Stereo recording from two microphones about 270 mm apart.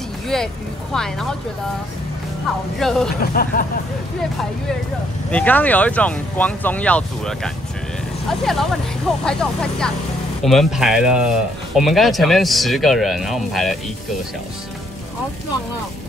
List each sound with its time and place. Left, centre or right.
0.3 s speech: centre
2.8 s speech: centre
3.2 s speech: left
5.3 s speech: centre